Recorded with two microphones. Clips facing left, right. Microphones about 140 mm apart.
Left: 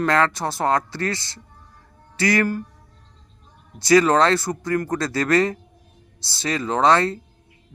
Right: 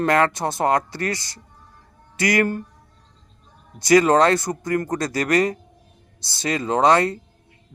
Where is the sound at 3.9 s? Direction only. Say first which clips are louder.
Right 1 dB; 20° right (ahead or behind).